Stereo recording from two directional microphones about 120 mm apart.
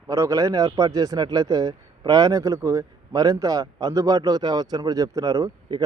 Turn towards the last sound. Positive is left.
turn(degrees=-30)  # may be behind; listen again after turning